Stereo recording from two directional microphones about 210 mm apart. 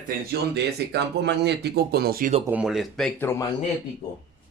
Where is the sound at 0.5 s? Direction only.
50° right (ahead or behind).